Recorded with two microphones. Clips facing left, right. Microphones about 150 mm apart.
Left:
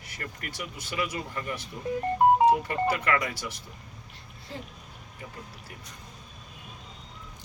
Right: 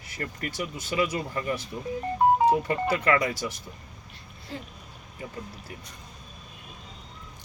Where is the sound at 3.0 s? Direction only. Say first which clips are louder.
Right 4 dB; 30° right (ahead or behind).